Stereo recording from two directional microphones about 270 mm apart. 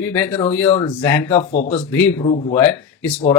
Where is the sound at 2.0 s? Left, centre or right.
Centre.